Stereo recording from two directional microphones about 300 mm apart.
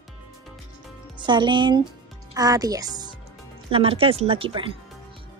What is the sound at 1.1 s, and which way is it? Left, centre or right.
A woman's voice, centre.